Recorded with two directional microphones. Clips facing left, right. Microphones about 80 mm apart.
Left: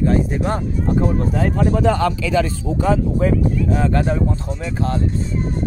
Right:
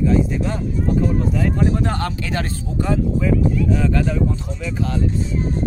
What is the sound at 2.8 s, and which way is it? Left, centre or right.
Speech, left.